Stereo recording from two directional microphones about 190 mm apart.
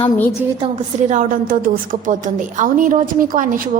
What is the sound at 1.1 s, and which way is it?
A woman's voice, 45° right (ahead or behind).